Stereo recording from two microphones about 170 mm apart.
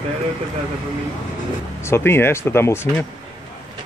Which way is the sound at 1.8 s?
15° left (ahead or behind).